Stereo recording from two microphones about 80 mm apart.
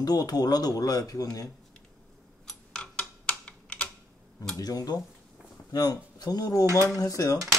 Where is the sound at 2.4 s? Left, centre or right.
Centre.